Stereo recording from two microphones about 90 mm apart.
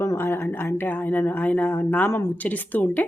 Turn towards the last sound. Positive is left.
turn(degrees=20)  # may be behind; listen again after turning